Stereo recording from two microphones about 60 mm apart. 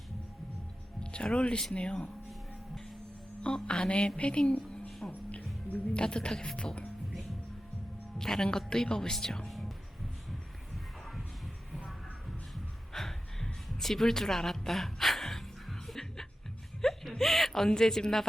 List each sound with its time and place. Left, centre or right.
0.9 s speech: centre
3.4 s speech: centre
8.2 s speech: centre
9.5 s music: centre
12.9 s a sound: centre